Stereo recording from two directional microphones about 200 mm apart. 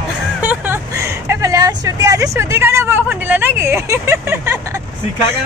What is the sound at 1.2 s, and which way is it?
Speech, 15° right (ahead or behind).